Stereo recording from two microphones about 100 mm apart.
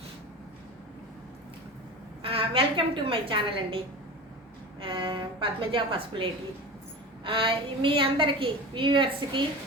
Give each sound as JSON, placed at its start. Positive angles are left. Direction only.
{"t": 2.2, "sound": "a woman's voice", "side_deg": -70}
{"t": 7.3, "sound": "a woman's voice", "side_deg": -60}